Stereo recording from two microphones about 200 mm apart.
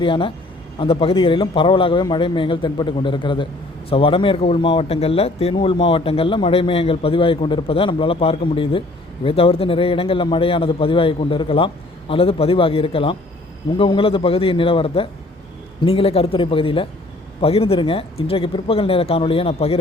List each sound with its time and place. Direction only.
0.0 s a man's voice: 25° left (ahead or behind)